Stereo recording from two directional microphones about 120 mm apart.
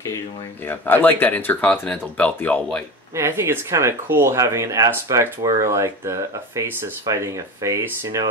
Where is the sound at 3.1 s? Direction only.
20° right (ahead or behind).